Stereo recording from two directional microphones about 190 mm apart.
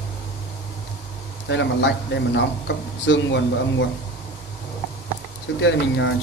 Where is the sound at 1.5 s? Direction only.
70° left (ahead or behind).